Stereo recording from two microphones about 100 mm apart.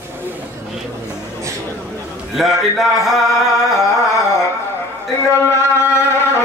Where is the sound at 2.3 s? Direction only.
Centre (ahead or behind).